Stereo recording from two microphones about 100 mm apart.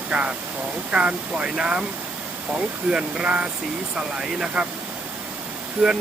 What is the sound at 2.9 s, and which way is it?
Speech, 10° right (ahead or behind).